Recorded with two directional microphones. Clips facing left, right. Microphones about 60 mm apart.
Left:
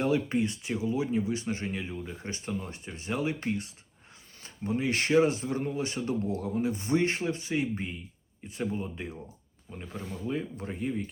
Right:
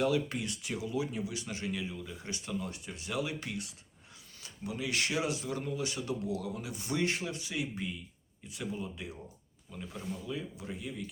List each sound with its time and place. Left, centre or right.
0.0 s speech: left